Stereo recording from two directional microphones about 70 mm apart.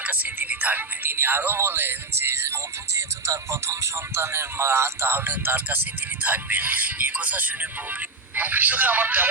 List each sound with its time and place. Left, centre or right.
0.0 s speech: right